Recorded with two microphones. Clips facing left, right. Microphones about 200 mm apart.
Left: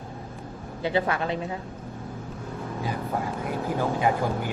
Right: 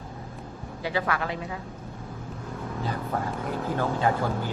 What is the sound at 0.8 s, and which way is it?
Speech, 25° left (ahead or behind).